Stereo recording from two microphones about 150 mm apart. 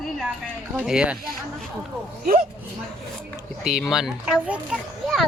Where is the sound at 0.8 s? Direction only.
5° right (ahead or behind).